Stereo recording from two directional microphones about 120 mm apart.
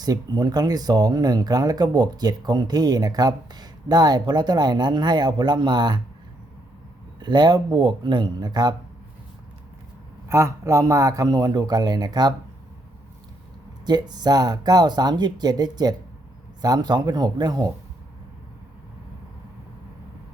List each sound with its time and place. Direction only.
0.0 s speech: 30° right (ahead or behind)
7.2 s speech: 35° right (ahead or behind)
10.2 s speech: 25° right (ahead or behind)
13.8 s speech: 35° right (ahead or behind)